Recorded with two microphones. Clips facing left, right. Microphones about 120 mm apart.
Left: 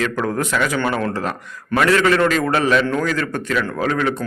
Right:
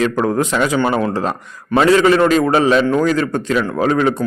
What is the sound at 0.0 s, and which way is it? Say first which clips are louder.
A man's voice: right 5 dB; 25° right (ahead or behind).